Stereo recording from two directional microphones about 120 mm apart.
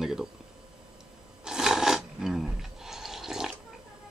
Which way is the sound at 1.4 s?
5° right (ahead or behind).